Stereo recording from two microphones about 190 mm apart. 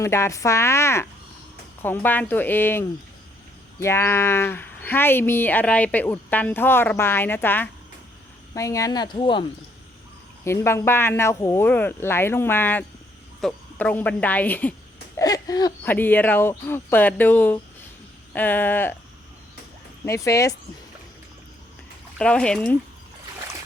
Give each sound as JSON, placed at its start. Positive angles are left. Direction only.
{"t": 0.0, "sound": "speech", "side_deg": 15}
{"t": 10.4, "sound": "speech", "side_deg": 15}
{"t": 20.1, "sound": "speech", "side_deg": 15}
{"t": 22.2, "sound": "speech", "side_deg": 5}